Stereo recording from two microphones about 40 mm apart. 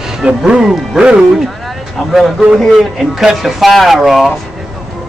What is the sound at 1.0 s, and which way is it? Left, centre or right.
Speech, right.